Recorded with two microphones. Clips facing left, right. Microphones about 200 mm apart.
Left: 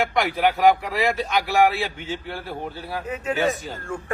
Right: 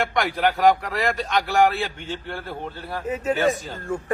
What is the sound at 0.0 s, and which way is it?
Speech, 5° left (ahead or behind).